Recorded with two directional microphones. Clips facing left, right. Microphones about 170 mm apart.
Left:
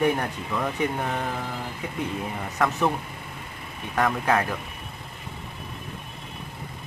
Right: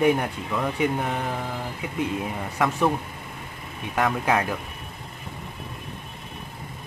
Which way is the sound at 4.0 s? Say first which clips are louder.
Even; 10° right (ahead or behind).